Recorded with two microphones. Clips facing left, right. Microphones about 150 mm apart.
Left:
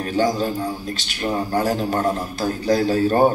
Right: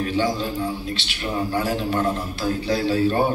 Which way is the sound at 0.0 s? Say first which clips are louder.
Left 3 dB; 45° left (ahead or behind).